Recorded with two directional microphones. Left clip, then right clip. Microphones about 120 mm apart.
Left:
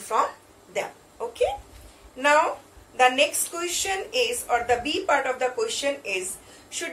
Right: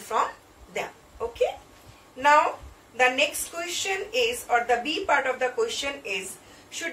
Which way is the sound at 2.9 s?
30° left (ahead or behind).